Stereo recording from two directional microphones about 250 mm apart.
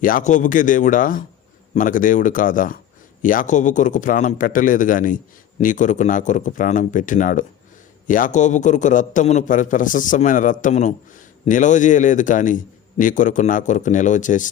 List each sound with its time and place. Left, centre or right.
0.0 s a man's voice: left